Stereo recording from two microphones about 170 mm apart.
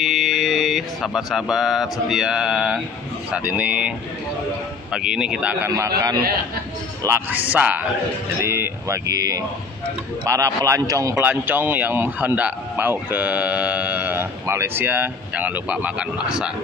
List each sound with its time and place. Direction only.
0.0 s speech: centre (ahead or behind)
4.9 s speech: 5° right (ahead or behind)
5.7 s a man's voice: 20° right (ahead or behind); by 16.4 s 5° right (ahead or behind)